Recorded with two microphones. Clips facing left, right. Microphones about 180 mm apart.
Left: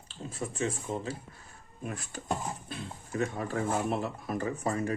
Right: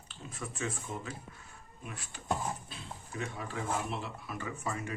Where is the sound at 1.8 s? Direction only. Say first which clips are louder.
Left 8 dB; 45° left (ahead or behind).